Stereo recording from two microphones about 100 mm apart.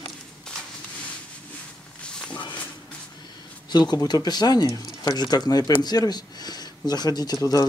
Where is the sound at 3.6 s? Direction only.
45° left (ahead or behind).